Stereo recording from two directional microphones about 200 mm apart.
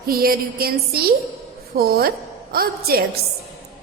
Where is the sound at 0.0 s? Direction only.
45° right (ahead or behind).